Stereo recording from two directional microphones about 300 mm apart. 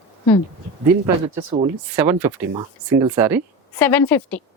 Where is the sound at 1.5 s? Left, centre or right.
Centre.